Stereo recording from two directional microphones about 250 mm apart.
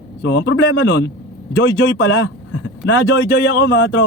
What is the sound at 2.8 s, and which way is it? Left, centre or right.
Speech, centre.